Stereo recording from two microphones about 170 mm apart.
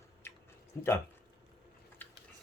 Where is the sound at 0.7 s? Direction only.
15° left (ahead or behind).